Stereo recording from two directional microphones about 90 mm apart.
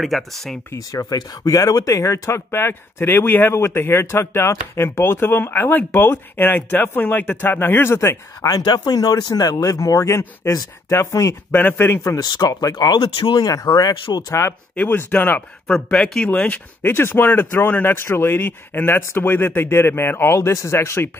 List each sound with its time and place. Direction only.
0.0 s speech: centre (ahead or behind)
0.7 s speech: 45° left (ahead or behind)
11.5 s speech: 20° left (ahead or behind)
12.2 s speech: 50° left (ahead or behind)
14.1 s speech: 50° left (ahead or behind)
14.8 s speech: 20° left (ahead or behind)
15.6 s speech: 5° left (ahead or behind)
16.3 s speech: 15° left (ahead or behind)